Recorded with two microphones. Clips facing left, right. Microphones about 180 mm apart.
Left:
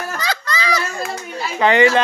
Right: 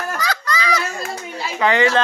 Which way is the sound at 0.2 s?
25° left (ahead or behind).